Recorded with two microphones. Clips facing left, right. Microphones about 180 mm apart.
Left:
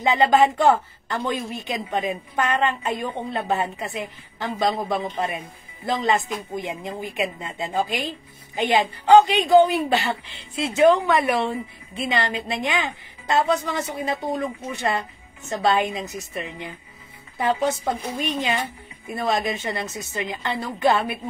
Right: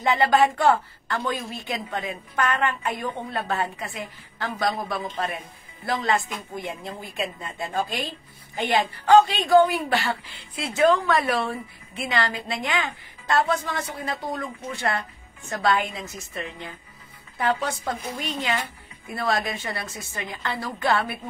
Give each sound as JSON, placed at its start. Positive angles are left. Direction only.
{"t": 0.0, "sound": "a woman's voice", "side_deg": 20}